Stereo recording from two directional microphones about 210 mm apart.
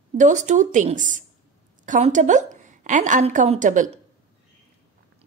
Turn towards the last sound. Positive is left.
turn(degrees=-35)  # may be behind; listen again after turning